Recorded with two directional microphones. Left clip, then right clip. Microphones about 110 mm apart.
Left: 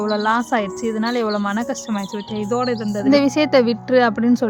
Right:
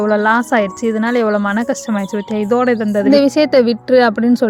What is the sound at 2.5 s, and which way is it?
Speech, 50° right (ahead or behind).